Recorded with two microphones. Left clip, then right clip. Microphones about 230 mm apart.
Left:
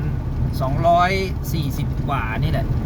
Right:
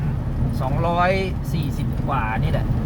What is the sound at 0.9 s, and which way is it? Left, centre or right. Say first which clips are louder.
Speech: left 4 dB; left.